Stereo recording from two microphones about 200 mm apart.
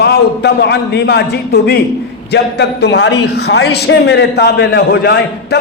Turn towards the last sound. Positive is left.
turn(degrees=55)  # may be behind; listen again after turning